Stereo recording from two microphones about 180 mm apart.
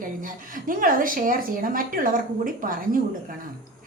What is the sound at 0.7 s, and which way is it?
A woman's voice, 50° right (ahead or behind).